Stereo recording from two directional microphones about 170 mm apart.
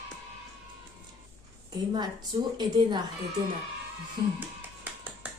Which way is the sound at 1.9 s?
25° right (ahead or behind).